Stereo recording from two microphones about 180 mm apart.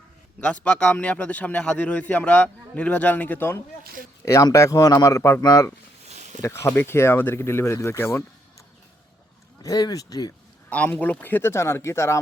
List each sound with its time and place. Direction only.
0.3 s a man's voice: 5° left (ahead or behind)
9.6 s speech: 20° left (ahead or behind)
10.7 s a man's voice: 5° left (ahead or behind)